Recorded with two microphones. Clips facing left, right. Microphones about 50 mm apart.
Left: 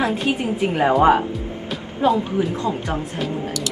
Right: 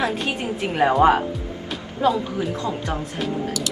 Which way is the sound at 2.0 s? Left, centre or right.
Left.